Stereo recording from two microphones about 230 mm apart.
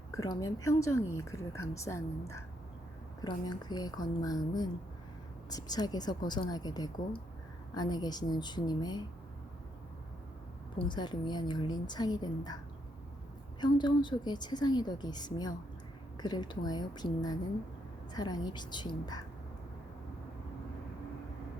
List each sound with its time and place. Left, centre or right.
0.1 s speech: centre
10.8 s a woman's voice: centre
13.6 s speech: centre